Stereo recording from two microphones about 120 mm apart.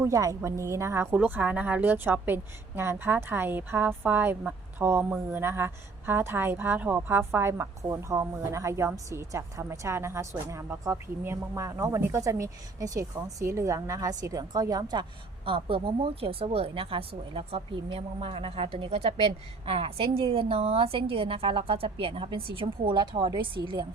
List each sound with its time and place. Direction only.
0.0 s speech: 30° right (ahead or behind)
15.4 s speech: 50° right (ahead or behind)